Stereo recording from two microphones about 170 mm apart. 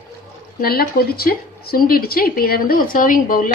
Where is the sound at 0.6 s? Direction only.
60° left (ahead or behind).